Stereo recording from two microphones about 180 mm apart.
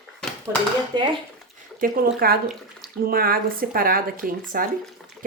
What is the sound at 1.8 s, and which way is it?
Speech, 55° right (ahead or behind).